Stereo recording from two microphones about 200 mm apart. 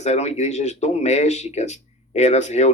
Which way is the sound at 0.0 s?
35° left (ahead or behind).